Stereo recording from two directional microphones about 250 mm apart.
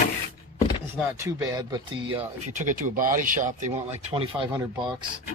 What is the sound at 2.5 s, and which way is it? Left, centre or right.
Speech, right.